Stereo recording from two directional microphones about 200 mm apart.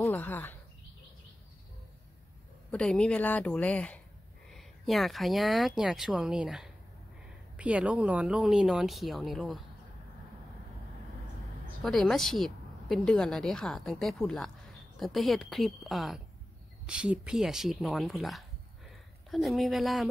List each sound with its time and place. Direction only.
0.0 s speech: 10° left (ahead or behind)
2.7 s speech: 5° left (ahead or behind)
11.8 s speech: centre (ahead or behind)